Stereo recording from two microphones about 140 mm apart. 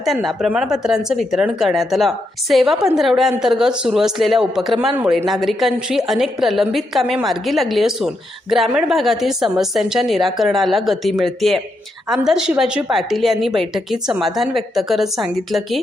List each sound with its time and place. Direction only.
0.0 s a woman's voice: centre (ahead or behind)